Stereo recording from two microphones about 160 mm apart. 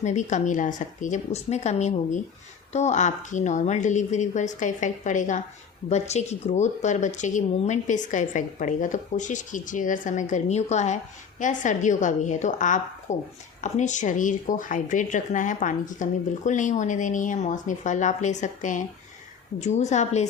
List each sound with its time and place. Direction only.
0.0 s speech: 50° left (ahead or behind)